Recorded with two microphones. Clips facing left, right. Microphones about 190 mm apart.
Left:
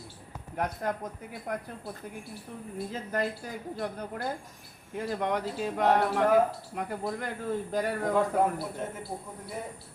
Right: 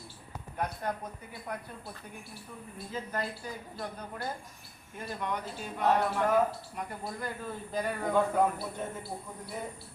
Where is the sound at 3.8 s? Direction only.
55° left (ahead or behind).